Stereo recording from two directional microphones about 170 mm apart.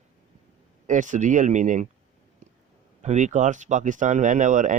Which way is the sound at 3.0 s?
45° right (ahead or behind).